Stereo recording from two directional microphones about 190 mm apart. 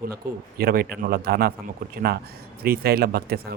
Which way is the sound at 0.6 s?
55° right (ahead or behind).